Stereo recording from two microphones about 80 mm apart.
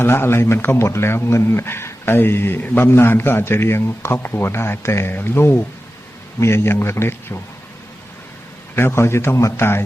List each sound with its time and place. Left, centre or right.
0.0 s a man's voice: left
8.7 s a man's voice: left